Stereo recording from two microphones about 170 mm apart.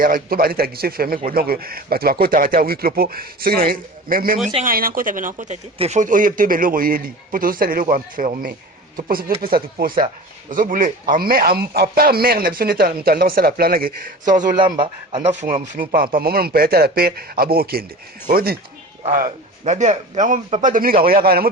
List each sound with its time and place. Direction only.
0.0 s a man's voice: 55° right (ahead or behind)
14.6 s a man's voice: 30° right (ahead or behind)
15.3 s speech: 45° right (ahead or behind); by 18.5 s 60° right (ahead or behind)
19.0 s a man's voice: 50° right (ahead or behind)